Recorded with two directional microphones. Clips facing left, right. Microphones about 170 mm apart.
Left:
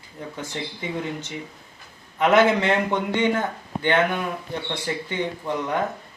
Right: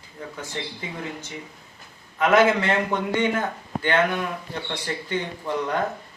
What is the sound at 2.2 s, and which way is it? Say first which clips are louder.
Speech: left 1 dB; 20° left (ahead or behind).